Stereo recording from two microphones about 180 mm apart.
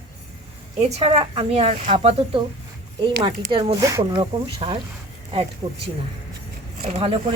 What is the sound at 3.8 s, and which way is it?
Speech, 15° right (ahead or behind).